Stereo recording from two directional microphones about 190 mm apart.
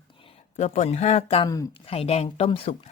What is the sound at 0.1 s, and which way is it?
Speech, 30° left (ahead or behind).